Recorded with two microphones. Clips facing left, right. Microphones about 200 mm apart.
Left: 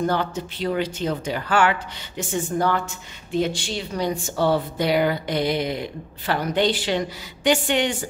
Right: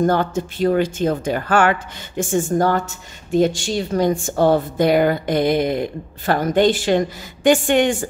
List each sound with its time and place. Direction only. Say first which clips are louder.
0.0 s speech: right 6 dB; 45° right (ahead or behind)